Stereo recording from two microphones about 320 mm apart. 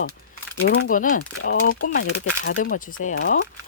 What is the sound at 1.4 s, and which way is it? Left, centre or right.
Speech, left.